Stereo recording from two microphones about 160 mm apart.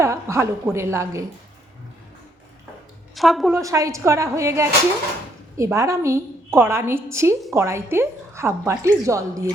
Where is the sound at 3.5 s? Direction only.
20° right (ahead or behind).